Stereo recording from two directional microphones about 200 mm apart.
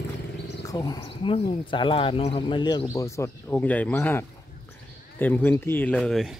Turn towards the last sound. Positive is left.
turn(degrees=5)  # may be behind; listen again after turning